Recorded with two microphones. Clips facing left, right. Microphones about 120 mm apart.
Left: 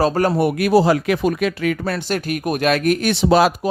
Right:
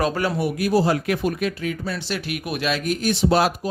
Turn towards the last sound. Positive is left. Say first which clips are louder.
# left 4 dB
turn(degrees=85)